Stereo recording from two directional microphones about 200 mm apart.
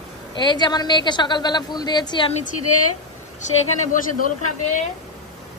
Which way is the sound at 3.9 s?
40° left (ahead or behind).